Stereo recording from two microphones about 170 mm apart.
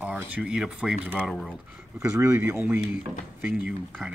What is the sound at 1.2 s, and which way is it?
Speech, 5° left (ahead or behind).